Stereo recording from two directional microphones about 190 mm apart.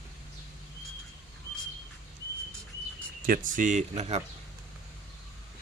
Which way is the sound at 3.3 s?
45° right (ahead or behind).